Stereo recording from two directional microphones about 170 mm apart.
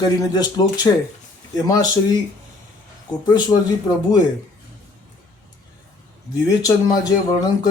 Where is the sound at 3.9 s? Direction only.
25° left (ahead or behind).